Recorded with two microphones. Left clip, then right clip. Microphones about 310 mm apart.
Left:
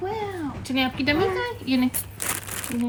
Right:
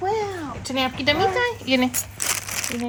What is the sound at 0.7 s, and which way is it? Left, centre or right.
A woman's voice, centre.